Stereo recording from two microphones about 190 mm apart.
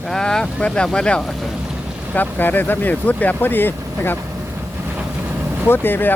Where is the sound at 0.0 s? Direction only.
Centre (ahead or behind).